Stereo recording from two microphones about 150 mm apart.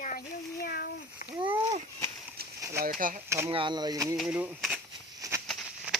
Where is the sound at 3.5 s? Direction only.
35° right (ahead or behind).